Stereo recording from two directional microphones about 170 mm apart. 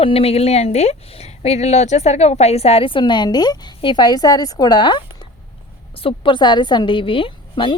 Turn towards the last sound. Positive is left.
turn(degrees=30)  # may be behind; listen again after turning